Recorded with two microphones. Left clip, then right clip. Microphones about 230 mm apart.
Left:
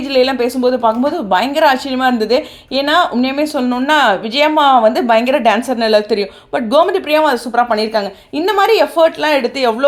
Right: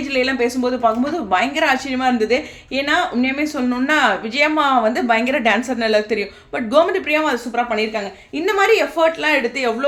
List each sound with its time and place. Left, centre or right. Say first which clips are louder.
0.1 s speech: left 6 dB; left